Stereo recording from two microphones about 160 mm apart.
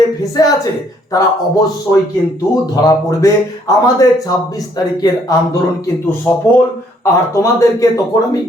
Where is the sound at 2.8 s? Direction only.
20° left (ahead or behind).